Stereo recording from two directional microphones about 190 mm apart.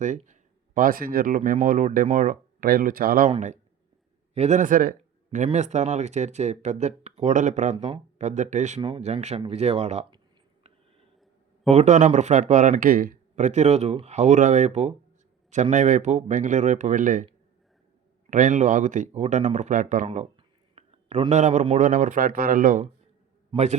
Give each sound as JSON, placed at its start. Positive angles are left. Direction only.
{"t": 0.0, "sound": "speech", "side_deg": -40}
{"t": 3.3, "sound": "speech", "side_deg": -40}
{"t": 11.7, "sound": "speech", "side_deg": -40}
{"t": 18.3, "sound": "speech", "side_deg": -40}
{"t": 23.5, "sound": "a man's voice", "side_deg": -35}